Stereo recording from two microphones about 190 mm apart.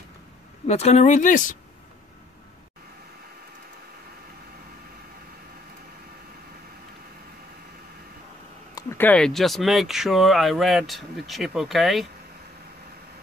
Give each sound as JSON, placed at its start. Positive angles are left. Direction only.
{"t": 0.7, "sound": "speech", "side_deg": 35}
{"t": 8.7, "sound": "speech", "side_deg": 10}